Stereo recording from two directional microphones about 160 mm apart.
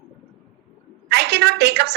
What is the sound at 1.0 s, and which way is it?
Speech, 90° right.